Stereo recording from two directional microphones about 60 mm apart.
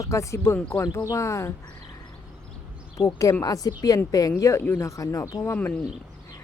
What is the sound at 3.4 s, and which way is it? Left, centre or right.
Speech, left.